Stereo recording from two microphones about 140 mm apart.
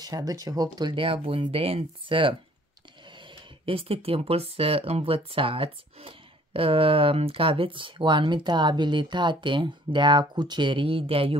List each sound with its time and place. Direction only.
0.0 s speech: 25° right (ahead or behind)